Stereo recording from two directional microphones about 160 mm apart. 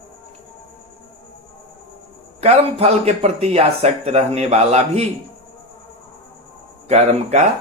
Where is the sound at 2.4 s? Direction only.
40° right (ahead or behind).